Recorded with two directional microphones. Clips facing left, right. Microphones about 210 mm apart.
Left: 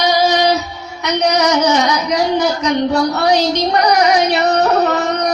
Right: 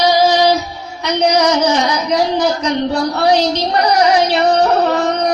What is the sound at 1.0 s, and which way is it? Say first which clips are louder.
A woman's voice: right 1 dB; 30° right (ahead or behind).